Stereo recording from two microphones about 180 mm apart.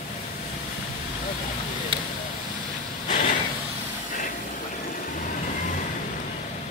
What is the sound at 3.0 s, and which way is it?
Vehicle, 45° left (ahead or behind).